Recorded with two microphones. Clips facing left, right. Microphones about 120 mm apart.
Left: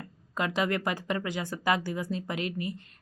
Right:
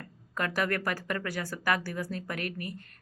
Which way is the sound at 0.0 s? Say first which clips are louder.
Left 2 dB; 15° left (ahead or behind).